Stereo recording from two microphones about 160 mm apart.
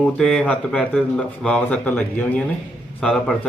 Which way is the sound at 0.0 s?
5° left (ahead or behind).